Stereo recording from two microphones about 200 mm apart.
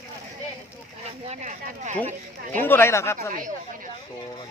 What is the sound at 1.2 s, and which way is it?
Speech, 35° right (ahead or behind).